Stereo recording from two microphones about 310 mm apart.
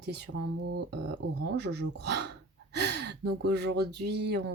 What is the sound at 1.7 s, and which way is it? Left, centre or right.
Speech, right.